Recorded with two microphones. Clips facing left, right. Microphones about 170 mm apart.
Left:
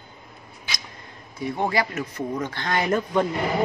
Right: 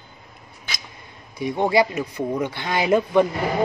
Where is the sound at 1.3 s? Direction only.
15° right (ahead or behind).